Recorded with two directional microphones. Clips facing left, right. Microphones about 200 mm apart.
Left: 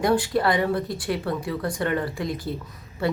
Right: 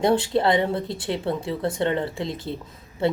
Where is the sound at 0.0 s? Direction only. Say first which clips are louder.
Right 1 dB; 25° right (ahead or behind).